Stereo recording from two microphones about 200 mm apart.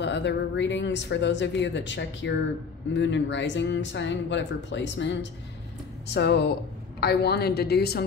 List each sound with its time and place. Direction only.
0.0 s a woman's voice: 60° left (ahead or behind)